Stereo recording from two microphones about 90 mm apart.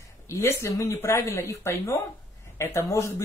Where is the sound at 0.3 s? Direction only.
30° left (ahead or behind).